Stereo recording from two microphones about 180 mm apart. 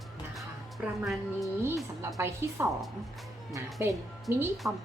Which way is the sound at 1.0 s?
Centre (ahead or behind).